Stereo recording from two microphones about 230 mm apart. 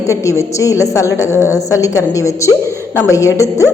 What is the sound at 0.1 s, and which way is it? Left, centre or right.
A woman's voice, centre.